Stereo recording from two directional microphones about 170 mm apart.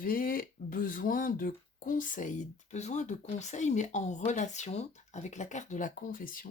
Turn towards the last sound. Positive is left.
turn(degrees=55)  # may be behind; listen again after turning